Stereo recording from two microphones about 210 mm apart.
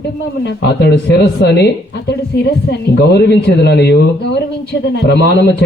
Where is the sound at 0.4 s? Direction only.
55° left (ahead or behind).